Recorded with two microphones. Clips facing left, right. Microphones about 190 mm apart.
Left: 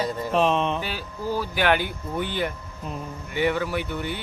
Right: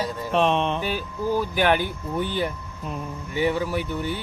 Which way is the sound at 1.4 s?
40° right (ahead or behind).